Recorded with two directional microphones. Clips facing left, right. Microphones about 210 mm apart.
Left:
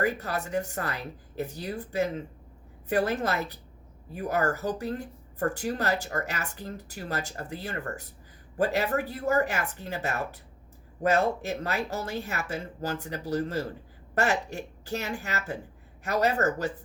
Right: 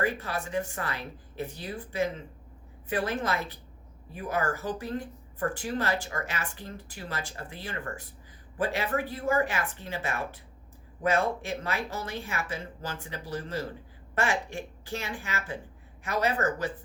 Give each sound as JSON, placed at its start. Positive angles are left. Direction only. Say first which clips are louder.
{"t": 0.0, "sound": "speech", "louder": "left 2 dB", "side_deg": 40}